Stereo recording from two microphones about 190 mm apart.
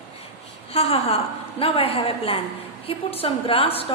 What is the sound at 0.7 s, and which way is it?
A woman's voice, 30° left (ahead or behind).